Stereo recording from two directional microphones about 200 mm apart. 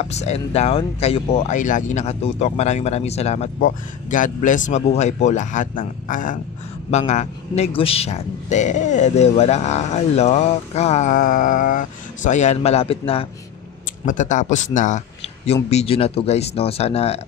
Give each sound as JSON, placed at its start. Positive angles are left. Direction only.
{"t": 0.0, "sound": "a man's voice", "side_deg": 35}